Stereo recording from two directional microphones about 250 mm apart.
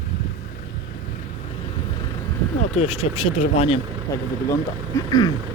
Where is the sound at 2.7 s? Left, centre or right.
Left.